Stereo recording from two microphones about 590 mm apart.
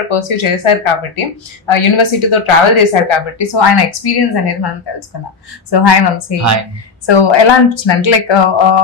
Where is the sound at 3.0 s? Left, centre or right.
Left.